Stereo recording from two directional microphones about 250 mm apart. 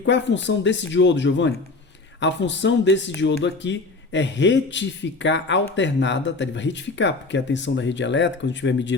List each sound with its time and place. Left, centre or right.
0.0 s speech: left